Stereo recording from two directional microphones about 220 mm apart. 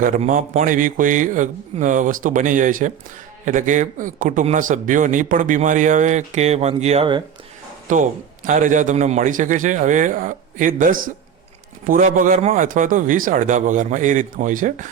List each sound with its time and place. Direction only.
0.0 s speech: 35° right (ahead or behind)